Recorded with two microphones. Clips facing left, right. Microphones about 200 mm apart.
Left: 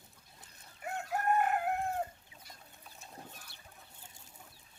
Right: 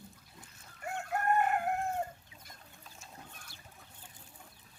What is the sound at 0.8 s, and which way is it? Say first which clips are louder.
Chicken: even; 5° left (ahead or behind).